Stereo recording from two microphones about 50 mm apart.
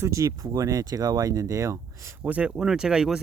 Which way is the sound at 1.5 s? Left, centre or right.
Right.